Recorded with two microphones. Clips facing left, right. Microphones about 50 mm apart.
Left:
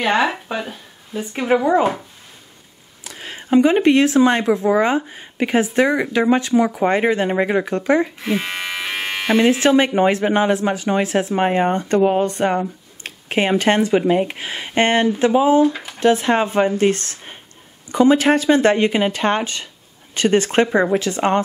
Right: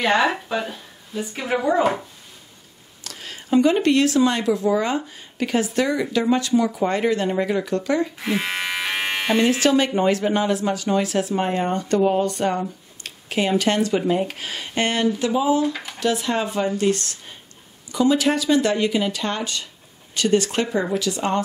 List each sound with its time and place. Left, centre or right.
0.0 s speech: centre
0.5 s a sound: centre
1.3 s speech: left
3.0 s speech: centre
8.2 s electric shaver: centre
9.3 s speech: centre
15.6 s speech: centre
16.0 s speech: left